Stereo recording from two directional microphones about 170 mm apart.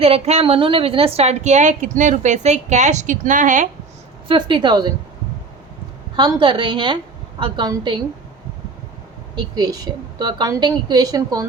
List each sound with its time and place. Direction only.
0.0 s a woman's voice: 35° right (ahead or behind)
4.3 s a woman's voice: 30° right (ahead or behind)
6.1 s a woman's voice: 25° right (ahead or behind)
9.3 s a woman's voice: 20° right (ahead or behind)